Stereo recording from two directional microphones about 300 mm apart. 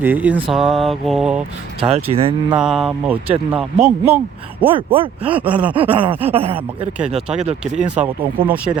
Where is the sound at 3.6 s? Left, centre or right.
Centre.